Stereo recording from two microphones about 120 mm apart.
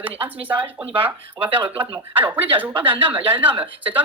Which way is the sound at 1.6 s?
45° right (ahead or behind).